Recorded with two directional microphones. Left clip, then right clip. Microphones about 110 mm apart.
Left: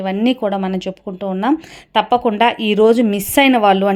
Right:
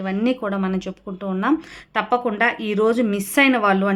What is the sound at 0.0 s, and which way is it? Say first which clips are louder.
A woman's voice: left 5 dB; 40° left (ahead or behind).